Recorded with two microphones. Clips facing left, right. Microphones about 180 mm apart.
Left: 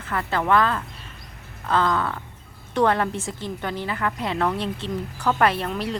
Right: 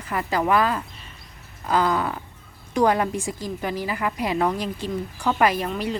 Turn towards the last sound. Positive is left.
turn(degrees=-5)  # may be behind; listen again after turning